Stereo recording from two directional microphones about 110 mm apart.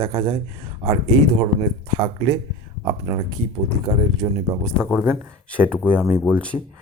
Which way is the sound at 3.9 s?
25° right (ahead or behind).